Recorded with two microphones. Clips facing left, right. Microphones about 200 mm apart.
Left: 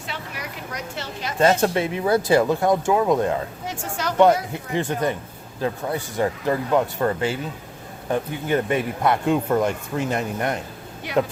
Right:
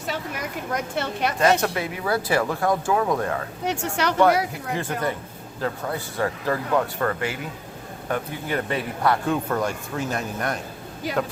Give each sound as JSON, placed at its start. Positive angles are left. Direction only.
{"t": 0.1, "sound": "a sound", "side_deg": -50}
{"t": 1.4, "sound": "a man's voice", "side_deg": 25}
{"t": 3.6, "sound": "a woman's voice", "side_deg": -70}
{"t": 4.7, "sound": "a man's voice", "side_deg": 20}